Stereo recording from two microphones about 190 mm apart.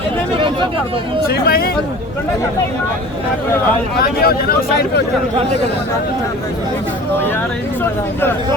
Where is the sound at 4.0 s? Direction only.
50° left (ahead or behind).